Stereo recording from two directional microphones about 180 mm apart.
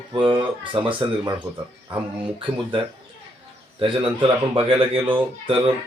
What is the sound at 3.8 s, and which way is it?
Speech, 30° right (ahead or behind).